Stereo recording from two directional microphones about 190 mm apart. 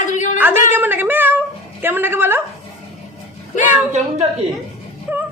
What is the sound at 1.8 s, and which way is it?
Speech, 10° right (ahead or behind).